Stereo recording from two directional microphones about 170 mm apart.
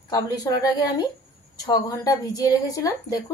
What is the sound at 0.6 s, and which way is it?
A woman's voice, 20° left (ahead or behind).